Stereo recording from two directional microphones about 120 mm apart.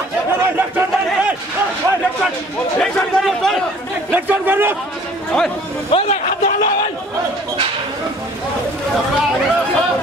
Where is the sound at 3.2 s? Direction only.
5° left (ahead or behind).